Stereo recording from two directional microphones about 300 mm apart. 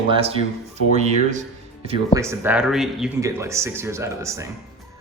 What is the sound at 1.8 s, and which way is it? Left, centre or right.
A man's voice, centre.